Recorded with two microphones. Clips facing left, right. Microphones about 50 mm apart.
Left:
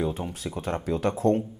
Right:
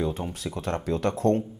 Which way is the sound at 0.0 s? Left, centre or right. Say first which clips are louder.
Even; centre.